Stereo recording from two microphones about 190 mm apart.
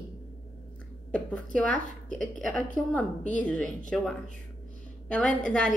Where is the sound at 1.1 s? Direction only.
5° left (ahead or behind).